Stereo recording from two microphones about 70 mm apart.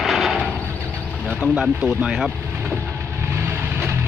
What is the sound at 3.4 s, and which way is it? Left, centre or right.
Vehicle, right.